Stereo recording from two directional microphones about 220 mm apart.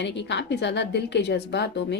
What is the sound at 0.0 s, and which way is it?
Speech, 50° left (ahead or behind).